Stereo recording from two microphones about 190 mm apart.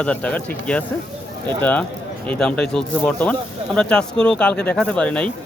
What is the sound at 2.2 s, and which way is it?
Speech, 5° left (ahead or behind).